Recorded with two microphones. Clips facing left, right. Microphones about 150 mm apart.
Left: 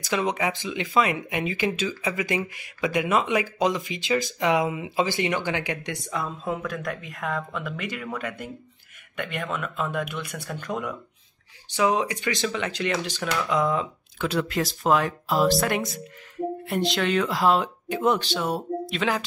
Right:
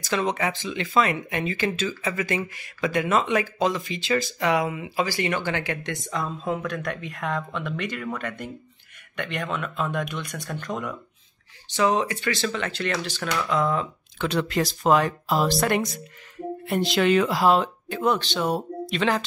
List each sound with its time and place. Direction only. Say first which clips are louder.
0.0 s speech: even; 15° left (ahead or behind); by 17.6 s 5° right (ahead or behind)
17.8 s speech: left 1 dB; 20° left (ahead or behind)
18.3 s speech: right 1 dB; centre (ahead or behind)